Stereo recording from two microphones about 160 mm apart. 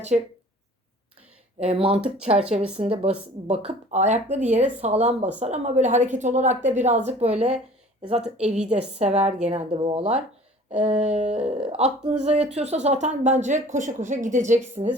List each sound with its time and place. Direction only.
1.5 s speech: 35° right (ahead or behind)
10.8 s a sound: 5° right (ahead or behind)
11.1 s speech: 40° right (ahead or behind)